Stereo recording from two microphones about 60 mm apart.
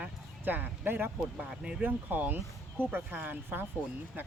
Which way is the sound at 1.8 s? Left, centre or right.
Right.